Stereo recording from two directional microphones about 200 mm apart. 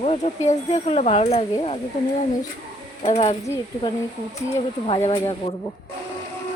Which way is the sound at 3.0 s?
35° left (ahead or behind).